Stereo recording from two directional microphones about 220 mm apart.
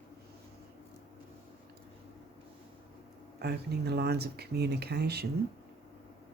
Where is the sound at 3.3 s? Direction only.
45° right (ahead or behind).